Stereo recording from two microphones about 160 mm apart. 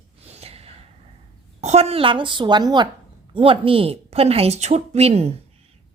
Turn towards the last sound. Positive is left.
turn(degrees=-40)  # may be behind; listen again after turning